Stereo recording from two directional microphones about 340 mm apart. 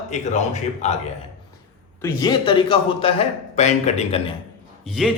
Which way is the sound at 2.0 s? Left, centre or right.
Centre.